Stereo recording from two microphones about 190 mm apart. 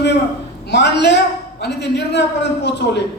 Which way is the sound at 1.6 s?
65° left (ahead or behind).